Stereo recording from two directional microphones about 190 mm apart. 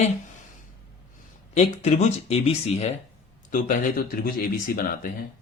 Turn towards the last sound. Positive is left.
turn(degrees=50)  # may be behind; listen again after turning